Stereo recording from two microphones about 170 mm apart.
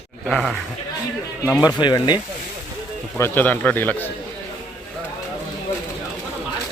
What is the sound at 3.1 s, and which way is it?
Speech, 15° left (ahead or behind).